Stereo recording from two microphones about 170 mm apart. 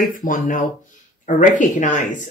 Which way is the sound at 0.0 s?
50° left (ahead or behind).